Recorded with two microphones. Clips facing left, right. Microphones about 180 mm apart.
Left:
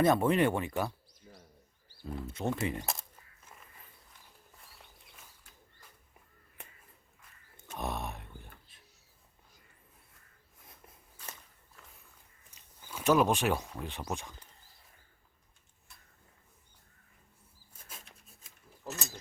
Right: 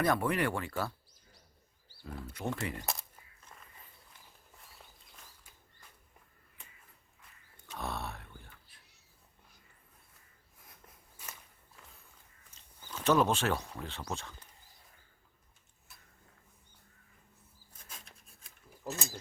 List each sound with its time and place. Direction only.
0.0 s speech: 25° left (ahead or behind)
7.8 s speech: 15° left (ahead or behind)
8.7 s a sound: 25° left (ahead or behind)
12.5 s speech: 10° left (ahead or behind)
18.9 s speech: 25° right (ahead or behind)